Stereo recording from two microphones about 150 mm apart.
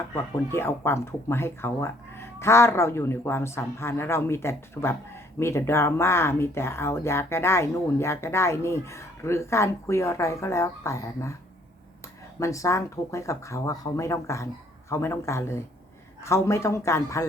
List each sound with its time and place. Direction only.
0.1 s speech: 15° left (ahead or behind)
12.4 s speech: 20° left (ahead or behind)